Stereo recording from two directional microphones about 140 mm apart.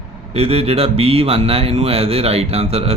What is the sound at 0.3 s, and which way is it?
Speech, 45° right (ahead or behind).